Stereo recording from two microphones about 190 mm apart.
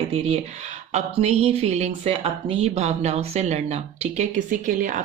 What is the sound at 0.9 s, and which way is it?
Speech, 35° right (ahead or behind).